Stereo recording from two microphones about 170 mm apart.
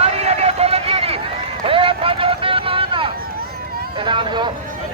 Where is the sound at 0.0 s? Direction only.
40° right (ahead or behind).